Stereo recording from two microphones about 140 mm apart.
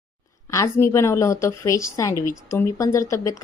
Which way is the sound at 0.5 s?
20° left (ahead or behind).